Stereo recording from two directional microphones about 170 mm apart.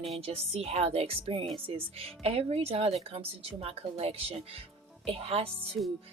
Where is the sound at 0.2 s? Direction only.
35° right (ahead or behind).